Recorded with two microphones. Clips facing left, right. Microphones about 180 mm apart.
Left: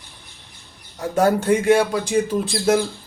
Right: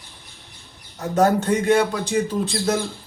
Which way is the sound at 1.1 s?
10° left (ahead or behind).